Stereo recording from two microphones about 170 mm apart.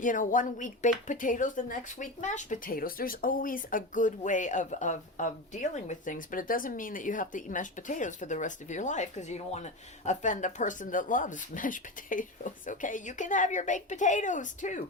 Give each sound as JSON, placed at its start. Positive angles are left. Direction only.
{"t": 0.0, "sound": "speech", "side_deg": 50}